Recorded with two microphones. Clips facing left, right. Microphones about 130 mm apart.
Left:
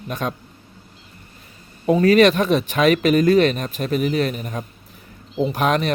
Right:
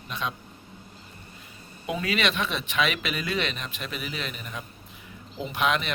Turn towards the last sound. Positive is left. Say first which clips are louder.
# left 7 dB
turn(degrees=40)  # may be behind; listen again after turning